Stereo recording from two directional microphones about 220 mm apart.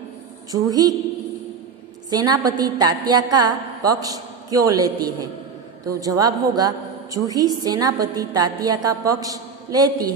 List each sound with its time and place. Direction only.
0.5 s a woman's voice: 15° right (ahead or behind)
2.0 s a woman's voice: 20° right (ahead or behind)